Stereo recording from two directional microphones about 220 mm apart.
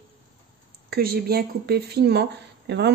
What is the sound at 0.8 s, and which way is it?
Speech, 45° right (ahead or behind).